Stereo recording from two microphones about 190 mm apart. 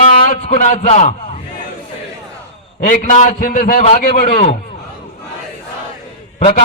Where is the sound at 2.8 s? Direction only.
40° left (ahead or behind).